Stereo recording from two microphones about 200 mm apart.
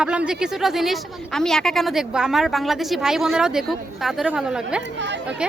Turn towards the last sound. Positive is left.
turn(degrees=-5)  # may be behind; listen again after turning